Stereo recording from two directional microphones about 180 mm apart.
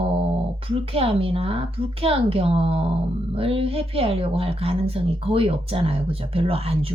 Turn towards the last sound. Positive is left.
turn(degrees=-35)  # may be behind; listen again after turning